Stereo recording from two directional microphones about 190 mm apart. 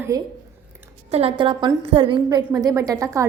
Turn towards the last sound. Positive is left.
turn(degrees=-15)  # may be behind; listen again after turning